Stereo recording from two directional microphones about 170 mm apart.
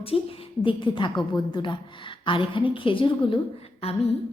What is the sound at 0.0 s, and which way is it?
A woman's voice, 35° left (ahead or behind).